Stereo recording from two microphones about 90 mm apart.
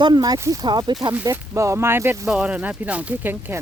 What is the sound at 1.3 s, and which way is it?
Speech, 30° right (ahead or behind).